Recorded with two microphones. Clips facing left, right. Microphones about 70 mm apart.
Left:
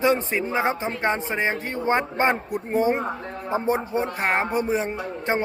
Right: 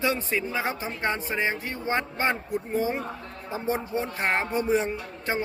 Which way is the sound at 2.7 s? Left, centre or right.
Left.